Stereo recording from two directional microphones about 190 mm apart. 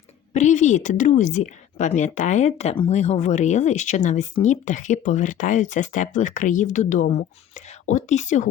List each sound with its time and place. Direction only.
0.3 s a woman's voice: 40° left (ahead or behind)